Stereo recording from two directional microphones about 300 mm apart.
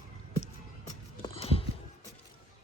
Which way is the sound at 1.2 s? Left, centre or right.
Centre.